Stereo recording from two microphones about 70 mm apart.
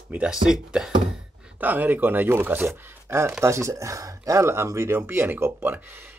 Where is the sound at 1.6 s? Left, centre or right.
Right.